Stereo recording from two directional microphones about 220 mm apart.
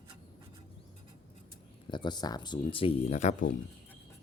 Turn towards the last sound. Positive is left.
turn(degrees=30)  # may be behind; listen again after turning